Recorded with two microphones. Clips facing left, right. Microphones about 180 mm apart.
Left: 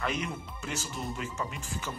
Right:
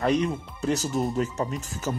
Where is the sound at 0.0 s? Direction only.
35° right (ahead or behind).